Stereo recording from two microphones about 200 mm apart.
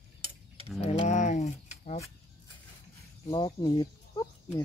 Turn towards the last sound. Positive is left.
turn(degrees=20)  # may be behind; listen again after turning